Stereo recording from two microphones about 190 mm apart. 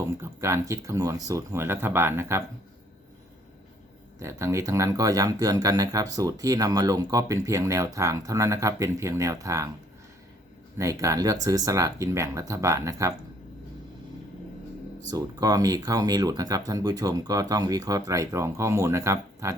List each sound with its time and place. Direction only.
0.0 s speech: 15° right (ahead or behind)
4.2 s speech: 15° right (ahead or behind)
10.8 s speech: 15° right (ahead or behind)
15.1 s speech: 20° right (ahead or behind)